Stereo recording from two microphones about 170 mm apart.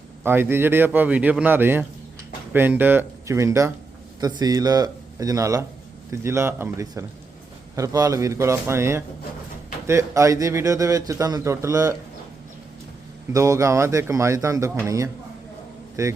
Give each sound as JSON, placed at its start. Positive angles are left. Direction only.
{"t": 0.2, "sound": "a man's voice", "side_deg": -10}
{"t": 13.3, "sound": "a man's voice", "side_deg": -20}